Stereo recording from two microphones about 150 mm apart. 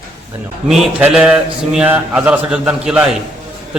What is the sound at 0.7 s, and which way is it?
A man's voice, 5° right (ahead or behind).